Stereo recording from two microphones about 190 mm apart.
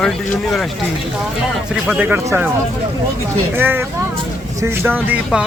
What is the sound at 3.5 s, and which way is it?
Speech, 10° right (ahead or behind).